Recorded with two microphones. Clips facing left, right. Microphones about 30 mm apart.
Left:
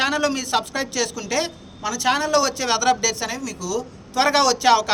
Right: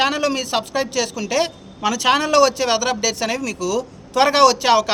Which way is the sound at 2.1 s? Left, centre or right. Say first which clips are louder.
Right 4 dB; right.